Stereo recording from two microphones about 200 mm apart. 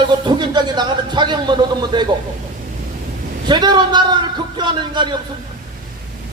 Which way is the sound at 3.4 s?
20° right (ahead or behind).